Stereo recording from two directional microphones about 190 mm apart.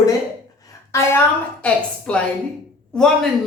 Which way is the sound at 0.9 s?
10° left (ahead or behind).